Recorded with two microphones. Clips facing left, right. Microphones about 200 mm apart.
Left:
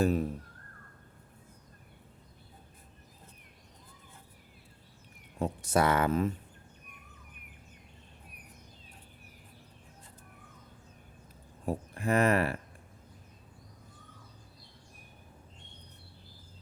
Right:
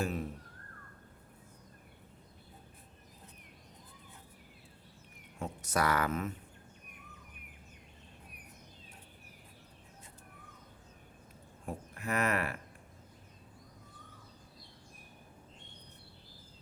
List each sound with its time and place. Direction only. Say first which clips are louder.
0.0 s speech: left 8 dB; 40° left (ahead or behind)
5.4 s speech: left 6 dB; 30° left (ahead or behind)
11.6 s speech: left 8 dB; 30° left (ahead or behind)